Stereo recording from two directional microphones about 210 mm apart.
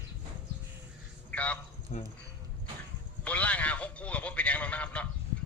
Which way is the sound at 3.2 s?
5° left (ahead or behind).